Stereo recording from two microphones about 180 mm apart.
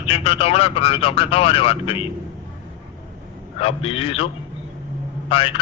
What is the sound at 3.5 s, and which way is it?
Speech, 30° left (ahead or behind).